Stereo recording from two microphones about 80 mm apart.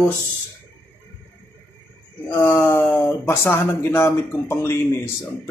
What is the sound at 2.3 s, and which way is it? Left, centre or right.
Speech, left.